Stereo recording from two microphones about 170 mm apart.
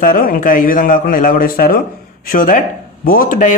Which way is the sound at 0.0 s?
55° left (ahead or behind).